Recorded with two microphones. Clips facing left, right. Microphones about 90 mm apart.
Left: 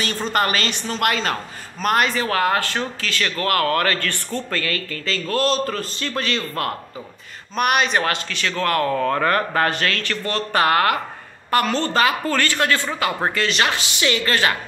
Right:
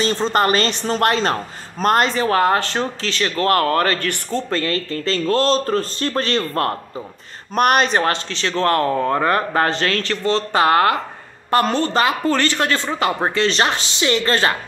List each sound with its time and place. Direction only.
0.0 s a woman's voice: 30° right (ahead or behind)